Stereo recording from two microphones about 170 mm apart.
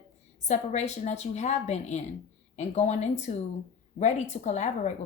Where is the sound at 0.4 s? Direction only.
40° left (ahead or behind).